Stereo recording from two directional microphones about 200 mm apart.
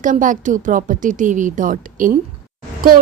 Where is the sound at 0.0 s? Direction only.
40° right (ahead or behind).